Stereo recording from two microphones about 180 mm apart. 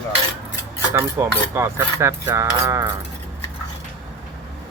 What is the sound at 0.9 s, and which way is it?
Cutlery, 15° right (ahead or behind).